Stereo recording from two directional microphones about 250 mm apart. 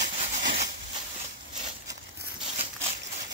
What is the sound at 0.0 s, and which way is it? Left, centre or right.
Rub, right.